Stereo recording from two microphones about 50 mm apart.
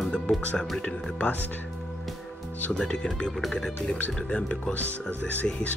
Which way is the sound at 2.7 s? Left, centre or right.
Centre.